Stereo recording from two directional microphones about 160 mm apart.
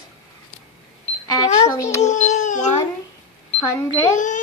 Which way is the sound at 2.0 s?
45° left (ahead or behind).